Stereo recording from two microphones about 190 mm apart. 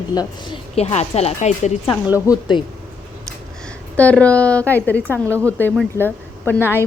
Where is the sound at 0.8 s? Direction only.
35° left (ahead or behind).